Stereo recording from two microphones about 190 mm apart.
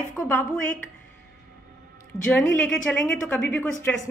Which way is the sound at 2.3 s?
5° left (ahead or behind).